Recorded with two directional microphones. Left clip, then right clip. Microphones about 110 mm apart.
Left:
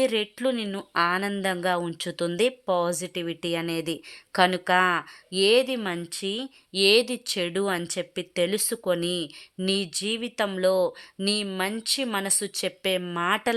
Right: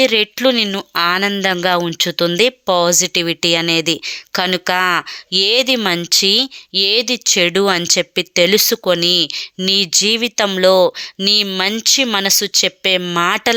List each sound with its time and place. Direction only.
0.2 s speech: 35° right (ahead or behind)
0.9 s speech: 25° right (ahead or behind)
5.7 s speech: 45° right (ahead or behind)
6.2 s speech: 35° right (ahead or behind)
6.7 s speech: 20° right (ahead or behind)
7.3 s speech: 35° right (ahead or behind)
8.4 s speech: 40° right (ahead or behind)
11.2 s speech: 25° right (ahead or behind)